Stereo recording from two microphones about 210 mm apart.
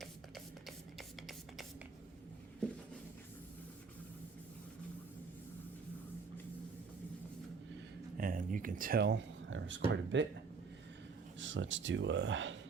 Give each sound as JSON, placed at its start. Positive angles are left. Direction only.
{"t": 0.9, "sound": "music", "side_deg": 0}
{"t": 8.2, "sound": "speech", "side_deg": -40}
{"t": 11.3, "sound": "speech", "side_deg": -60}